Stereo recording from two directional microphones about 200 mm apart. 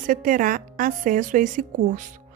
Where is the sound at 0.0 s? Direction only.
40° right (ahead or behind).